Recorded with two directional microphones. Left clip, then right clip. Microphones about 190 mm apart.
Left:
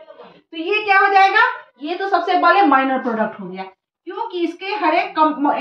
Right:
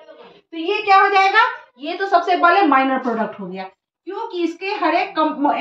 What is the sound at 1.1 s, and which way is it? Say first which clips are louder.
A woman's voice: left 1 dB; 30° right (ahead or behind).